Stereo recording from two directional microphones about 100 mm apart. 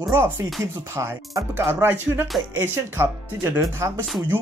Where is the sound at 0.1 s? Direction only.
25° right (ahead or behind).